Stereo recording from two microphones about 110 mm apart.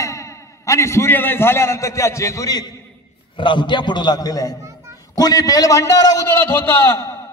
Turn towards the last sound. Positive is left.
turn(degrees=20)  # may be behind; listen again after turning